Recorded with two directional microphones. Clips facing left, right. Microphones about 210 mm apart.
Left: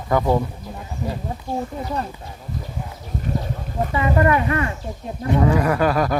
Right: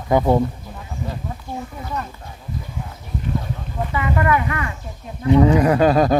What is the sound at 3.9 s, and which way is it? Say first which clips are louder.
Speech: left 2 dB; 30° left (ahead or behind).